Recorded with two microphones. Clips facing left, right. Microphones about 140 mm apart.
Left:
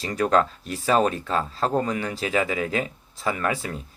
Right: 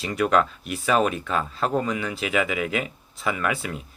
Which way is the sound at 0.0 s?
35° left (ahead or behind).